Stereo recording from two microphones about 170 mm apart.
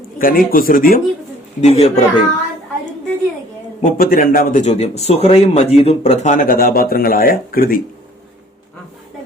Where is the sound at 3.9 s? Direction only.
60° left (ahead or behind).